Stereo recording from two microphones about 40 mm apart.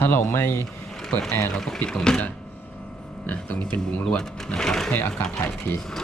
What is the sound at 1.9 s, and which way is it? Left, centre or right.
Speech, centre.